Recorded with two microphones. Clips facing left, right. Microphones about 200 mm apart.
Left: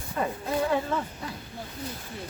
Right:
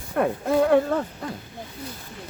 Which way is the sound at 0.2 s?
60° right (ahead or behind).